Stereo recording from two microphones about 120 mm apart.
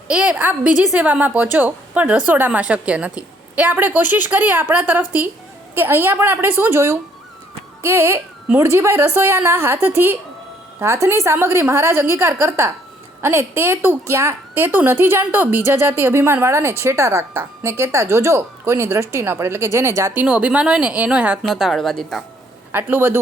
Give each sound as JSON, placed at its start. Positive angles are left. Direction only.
{"t": 0.1, "sound": "a woman's voice", "side_deg": -10}
{"t": 20.2, "sound": "a woman's voice", "side_deg": -10}
{"t": 22.7, "sound": "a woman's voice", "side_deg": -15}